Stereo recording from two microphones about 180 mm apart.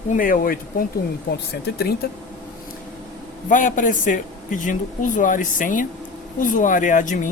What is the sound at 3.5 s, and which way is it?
Speech, 45° left (ahead or behind).